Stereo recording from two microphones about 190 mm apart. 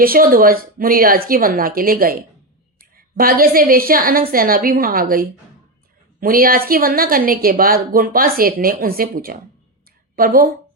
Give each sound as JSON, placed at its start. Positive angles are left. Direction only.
{"t": 0.0, "sound": "a woman's voice", "side_deg": -50}